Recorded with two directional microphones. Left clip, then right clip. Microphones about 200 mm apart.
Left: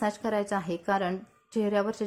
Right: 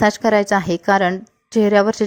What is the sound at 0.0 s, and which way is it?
A woman's voice, 40° right (ahead or behind).